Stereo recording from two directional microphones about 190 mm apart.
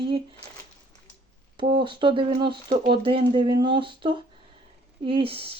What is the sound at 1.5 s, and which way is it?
Speech, 25° right (ahead or behind).